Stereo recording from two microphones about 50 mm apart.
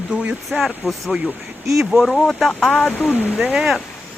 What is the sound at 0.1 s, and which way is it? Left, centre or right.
Speech, right.